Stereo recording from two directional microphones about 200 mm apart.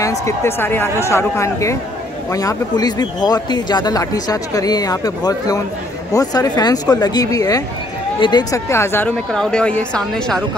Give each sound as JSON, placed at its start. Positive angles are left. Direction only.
{"t": 0.0, "sound": "a man's voice", "side_deg": 15}